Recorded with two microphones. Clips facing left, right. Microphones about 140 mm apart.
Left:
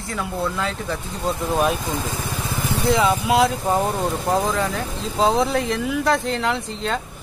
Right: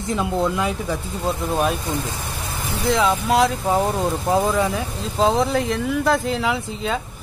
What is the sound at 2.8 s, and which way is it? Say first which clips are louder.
Speech: even; centre (ahead or behind).